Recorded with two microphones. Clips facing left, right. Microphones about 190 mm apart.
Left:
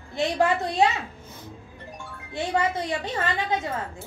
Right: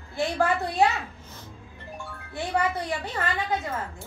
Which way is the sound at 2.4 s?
20° left (ahead or behind).